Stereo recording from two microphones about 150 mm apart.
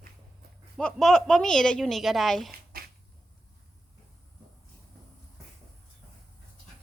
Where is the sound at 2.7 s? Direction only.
75° right (ahead or behind).